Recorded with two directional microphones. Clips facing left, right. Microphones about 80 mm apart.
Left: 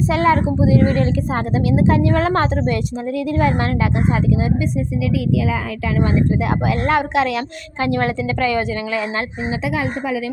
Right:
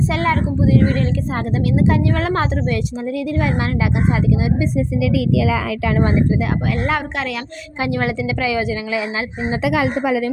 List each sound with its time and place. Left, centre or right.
0.1 s a woman's voice: centre
0.6 s a woman's voice: centre
6.7 s a woman's voice: centre
9.6 s a woman's voice: right